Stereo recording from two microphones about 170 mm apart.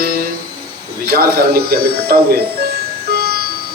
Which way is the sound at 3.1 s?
65° right (ahead or behind).